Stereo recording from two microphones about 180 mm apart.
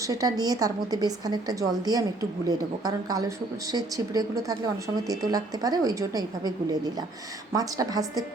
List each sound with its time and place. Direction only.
0.1 s a woman's voice: 20° right (ahead or behind)
7.5 s a woman's voice: 20° right (ahead or behind)